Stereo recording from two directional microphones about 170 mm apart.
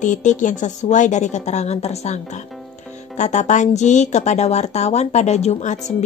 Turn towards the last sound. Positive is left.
turn(degrees=45)  # may be behind; listen again after turning